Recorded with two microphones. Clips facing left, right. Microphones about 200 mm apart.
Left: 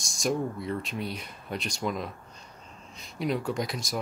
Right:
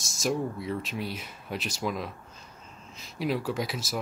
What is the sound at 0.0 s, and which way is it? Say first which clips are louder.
Speech: even; 5° right (ahead or behind).